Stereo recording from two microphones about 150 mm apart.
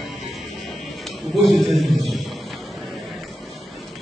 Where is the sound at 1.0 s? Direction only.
Centre (ahead or behind).